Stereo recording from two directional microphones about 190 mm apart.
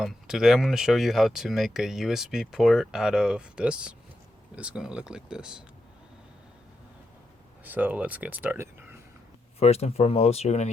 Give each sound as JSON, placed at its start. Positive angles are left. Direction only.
{"t": 0.0, "sound": "speech", "side_deg": 0}
{"t": 7.6, "sound": "speech", "side_deg": -10}
{"t": 9.6, "sound": "speech", "side_deg": 35}